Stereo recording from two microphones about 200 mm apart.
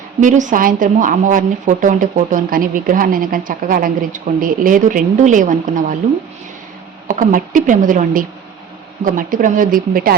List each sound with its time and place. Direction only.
0.2 s a woman's voice: 40° right (ahead or behind)
7.1 s a woman's voice: 40° right (ahead or behind)